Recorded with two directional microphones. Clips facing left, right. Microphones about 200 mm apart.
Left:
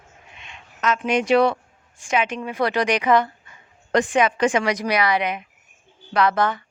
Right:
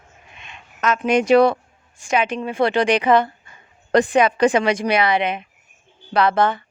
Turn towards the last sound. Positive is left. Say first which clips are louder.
# right 2 dB
turn(degrees=-30)  # may be behind; listen again after turning